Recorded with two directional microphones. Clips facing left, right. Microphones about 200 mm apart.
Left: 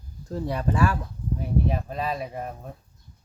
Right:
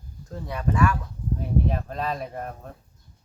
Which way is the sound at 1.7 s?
5° left (ahead or behind).